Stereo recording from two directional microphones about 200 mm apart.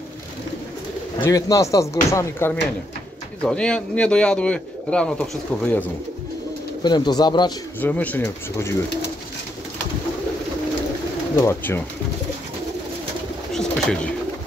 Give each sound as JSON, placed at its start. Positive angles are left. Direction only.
{"t": 1.2, "sound": "speech", "side_deg": 15}
{"t": 6.8, "sound": "speech", "side_deg": 20}
{"t": 7.8, "sound": "speech", "side_deg": 10}
{"t": 11.4, "sound": "speech", "side_deg": 10}
{"t": 13.5, "sound": "bird", "side_deg": 5}